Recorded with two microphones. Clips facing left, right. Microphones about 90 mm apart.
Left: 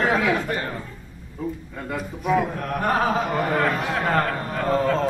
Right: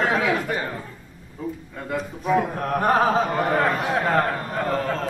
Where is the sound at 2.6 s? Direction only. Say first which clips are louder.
Right 3 dB; 30° right (ahead or behind).